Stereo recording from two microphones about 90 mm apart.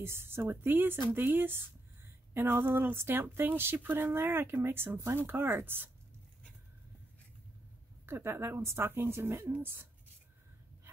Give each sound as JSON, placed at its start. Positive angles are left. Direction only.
{"t": 0.0, "sound": "speech", "side_deg": -25}
{"t": 8.1, "sound": "speech", "side_deg": -25}